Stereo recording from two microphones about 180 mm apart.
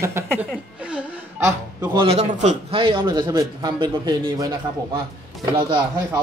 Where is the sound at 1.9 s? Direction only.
35° right (ahead or behind).